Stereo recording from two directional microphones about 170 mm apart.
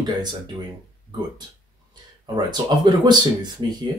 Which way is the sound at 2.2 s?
25° right (ahead or behind).